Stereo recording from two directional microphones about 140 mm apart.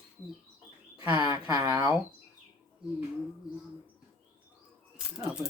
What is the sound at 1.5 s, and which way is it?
Speech, 25° right (ahead or behind).